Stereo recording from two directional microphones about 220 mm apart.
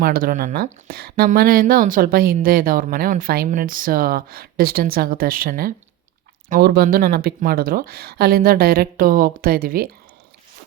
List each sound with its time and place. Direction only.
0.0 s speech: 40° right (ahead or behind)